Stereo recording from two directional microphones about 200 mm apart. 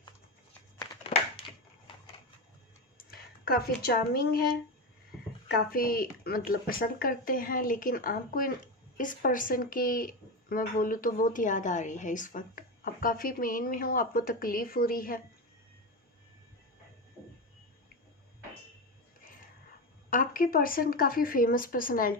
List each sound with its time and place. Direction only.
0.8 s a sound: 25° left (ahead or behind)
3.0 s speech: 50° left (ahead or behind)
20.1 s speech: 45° left (ahead or behind)